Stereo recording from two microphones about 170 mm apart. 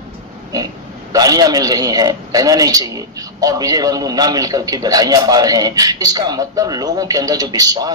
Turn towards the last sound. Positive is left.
turn(degrees=-20)  # may be behind; listen again after turning